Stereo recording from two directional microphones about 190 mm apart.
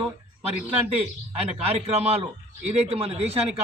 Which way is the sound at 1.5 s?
35° right (ahead or behind).